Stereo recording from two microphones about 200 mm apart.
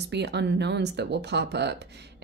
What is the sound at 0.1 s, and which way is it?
Speech, 60° right (ahead or behind).